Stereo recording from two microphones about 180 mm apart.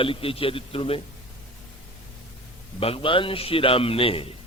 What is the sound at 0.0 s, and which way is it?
A man's voice, 30° left (ahead or behind).